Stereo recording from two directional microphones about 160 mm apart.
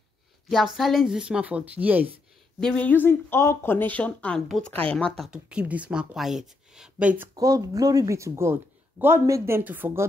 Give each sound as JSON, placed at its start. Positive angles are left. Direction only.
{"t": 0.5, "sound": "speech", "side_deg": 0}
{"t": 2.6, "sound": "speech", "side_deg": 10}
{"t": 7.3, "sound": "speech", "side_deg": -20}